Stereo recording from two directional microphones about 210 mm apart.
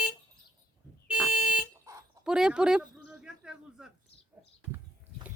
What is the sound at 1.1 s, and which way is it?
Car alarm, 5° right (ahead or behind).